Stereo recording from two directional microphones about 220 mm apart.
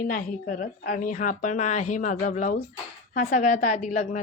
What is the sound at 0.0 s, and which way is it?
A woman's voice, 35° left (ahead or behind).